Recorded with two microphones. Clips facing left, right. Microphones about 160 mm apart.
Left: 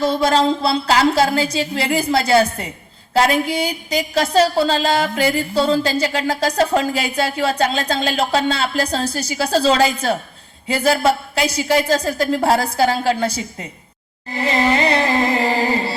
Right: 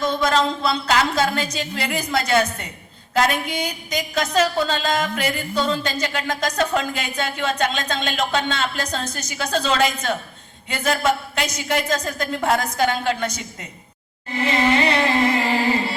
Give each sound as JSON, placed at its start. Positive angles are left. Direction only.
{"t": 0.0, "sound": "a woman's voice", "side_deg": 30}
{"t": 14.3, "sound": "music", "side_deg": 35}